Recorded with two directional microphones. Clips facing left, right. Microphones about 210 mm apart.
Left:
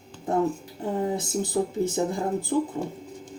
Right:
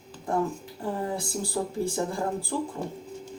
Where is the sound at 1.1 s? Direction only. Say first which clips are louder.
Left 4 dB; 20° left (ahead or behind).